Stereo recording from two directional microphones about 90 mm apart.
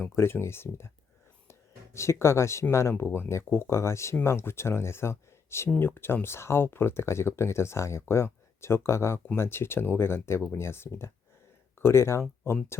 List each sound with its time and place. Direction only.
0.0 s speech: 25° left (ahead or behind)
1.5 s music: 30° left (ahead or behind)
3.0 s speech: 25° left (ahead or behind)